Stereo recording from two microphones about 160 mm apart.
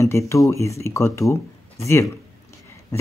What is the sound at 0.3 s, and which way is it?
Speech, 20° left (ahead or behind).